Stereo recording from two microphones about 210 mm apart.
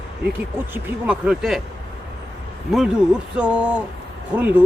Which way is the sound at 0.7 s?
5° right (ahead or behind).